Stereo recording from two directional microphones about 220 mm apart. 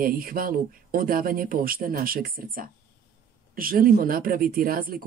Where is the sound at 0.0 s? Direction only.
40° right (ahead or behind).